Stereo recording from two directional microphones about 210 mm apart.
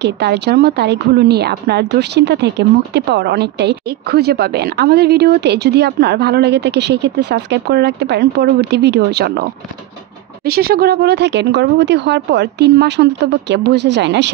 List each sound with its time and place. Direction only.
0.0 s a woman's voice: 55° right (ahead or behind)